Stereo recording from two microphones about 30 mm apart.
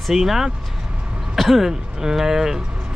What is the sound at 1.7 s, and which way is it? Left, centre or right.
Speech, centre.